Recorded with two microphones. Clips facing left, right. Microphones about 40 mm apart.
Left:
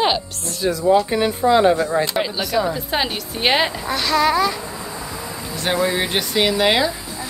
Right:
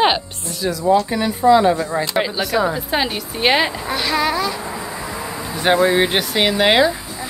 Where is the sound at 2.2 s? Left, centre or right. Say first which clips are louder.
Right 2 dB; centre.